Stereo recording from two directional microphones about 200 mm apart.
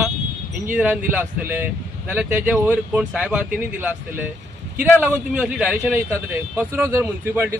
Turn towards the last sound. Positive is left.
turn(degrees=-10)  # may be behind; listen again after turning